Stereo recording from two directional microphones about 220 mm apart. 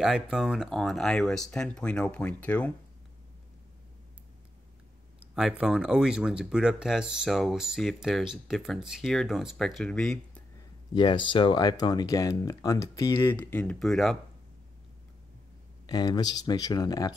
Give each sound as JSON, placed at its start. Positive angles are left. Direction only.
{"t": 0.0, "sound": "speech", "side_deg": 0}
{"t": 5.3, "sound": "speech", "side_deg": -5}
{"t": 10.9, "sound": "speech", "side_deg": 20}
{"t": 15.9, "sound": "speech", "side_deg": 20}